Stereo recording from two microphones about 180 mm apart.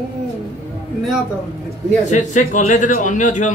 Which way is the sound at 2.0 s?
45° left (ahead or behind).